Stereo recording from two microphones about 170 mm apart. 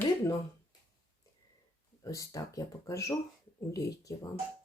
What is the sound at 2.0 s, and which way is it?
Speech, 20° left (ahead or behind).